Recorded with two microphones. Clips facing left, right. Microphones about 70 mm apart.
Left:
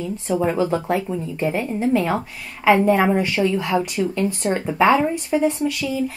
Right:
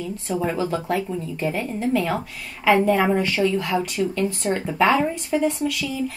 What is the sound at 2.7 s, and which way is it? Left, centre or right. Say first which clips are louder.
Speech: left 2 dB; centre.